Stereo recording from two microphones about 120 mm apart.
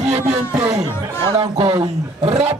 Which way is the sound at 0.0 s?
60° right (ahead or behind).